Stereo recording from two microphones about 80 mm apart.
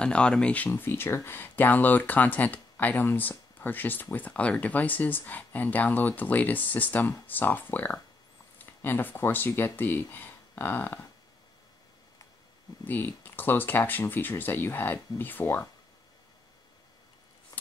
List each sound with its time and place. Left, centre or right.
0.0 s speech: centre
0.7 s speech: left
12.8 s speech: left